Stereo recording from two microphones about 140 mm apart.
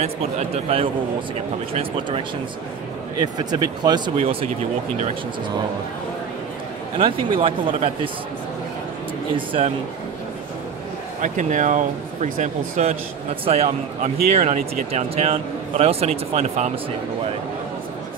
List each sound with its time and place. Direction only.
0.0 s speech: 50° right (ahead or behind)
3.3 s speech: 30° right (ahead or behind)
4.2 s speech: 40° right (ahead or behind)
7.0 s speech: 40° right (ahead or behind)
9.3 s speech: 35° right (ahead or behind)
11.1 s speech: 65° right (ahead or behind)
13.3 s speech: 45° right (ahead or behind)
14.0 s speech: 65° right (ahead or behind)
14.9 s speech: 50° right (ahead or behind)